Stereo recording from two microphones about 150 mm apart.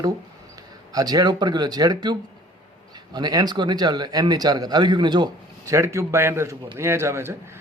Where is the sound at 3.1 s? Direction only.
25° right (ahead or behind).